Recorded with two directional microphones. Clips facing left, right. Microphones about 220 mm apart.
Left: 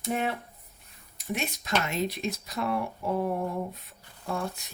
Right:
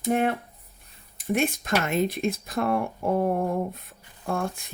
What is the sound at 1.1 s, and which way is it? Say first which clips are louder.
Speech: right 8 dB; 50° right (ahead or behind).